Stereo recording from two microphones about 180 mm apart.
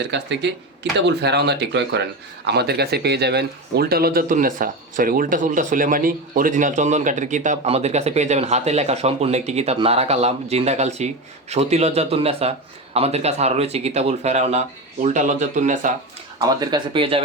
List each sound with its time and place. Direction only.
0.0 s speech: 75° right (ahead or behind)
2.5 s speech: 65° right (ahead or behind); by 15.9 s 45° right (ahead or behind)
16.4 s speech: 20° right (ahead or behind)